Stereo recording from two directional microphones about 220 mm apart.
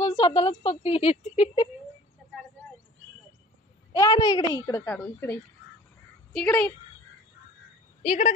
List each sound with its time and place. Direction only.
0.0 s a woman's voice: 30° left (ahead or behind)
4.0 s a child's voice: 15° left (ahead or behind)
8.0 s speech: 30° left (ahead or behind)